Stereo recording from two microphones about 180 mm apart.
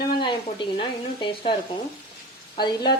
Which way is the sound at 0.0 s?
25° left (ahead or behind).